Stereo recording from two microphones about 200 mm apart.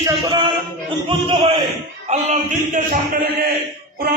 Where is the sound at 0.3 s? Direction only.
25° right (ahead or behind).